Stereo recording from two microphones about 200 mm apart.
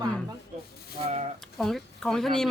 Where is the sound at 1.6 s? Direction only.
Centre (ahead or behind).